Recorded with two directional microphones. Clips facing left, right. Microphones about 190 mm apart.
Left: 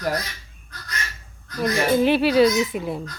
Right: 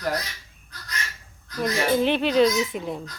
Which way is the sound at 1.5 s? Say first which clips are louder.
Left 3 dB; 55° left (ahead or behind).